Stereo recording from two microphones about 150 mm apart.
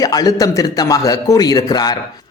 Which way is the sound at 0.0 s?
25° left (ahead or behind).